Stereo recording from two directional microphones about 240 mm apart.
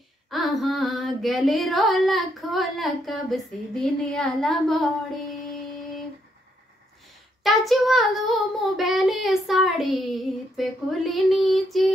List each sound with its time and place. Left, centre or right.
0.3 s music: centre
7.4 s music: centre